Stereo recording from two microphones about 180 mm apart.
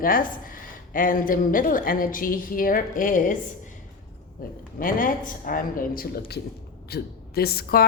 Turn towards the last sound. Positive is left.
turn(degrees=60)  # may be behind; listen again after turning